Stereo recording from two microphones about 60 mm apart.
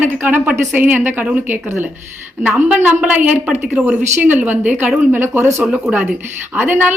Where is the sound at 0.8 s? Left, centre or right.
Right.